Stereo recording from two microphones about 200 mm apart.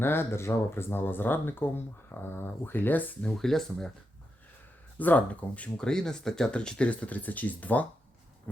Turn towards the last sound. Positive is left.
turn(degrees=10)  # may be behind; listen again after turning